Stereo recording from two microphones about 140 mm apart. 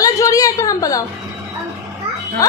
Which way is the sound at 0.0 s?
25° left (ahead or behind).